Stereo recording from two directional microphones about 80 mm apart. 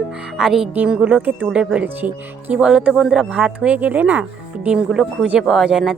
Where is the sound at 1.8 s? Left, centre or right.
Right.